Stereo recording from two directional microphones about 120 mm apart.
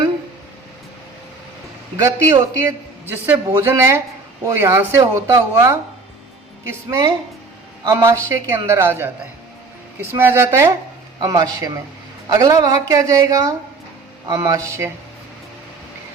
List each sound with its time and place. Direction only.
2.0 s a man's voice: 25° right (ahead or behind)